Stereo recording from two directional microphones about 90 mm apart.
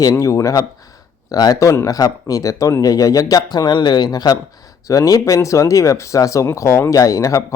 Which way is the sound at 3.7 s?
55° left (ahead or behind).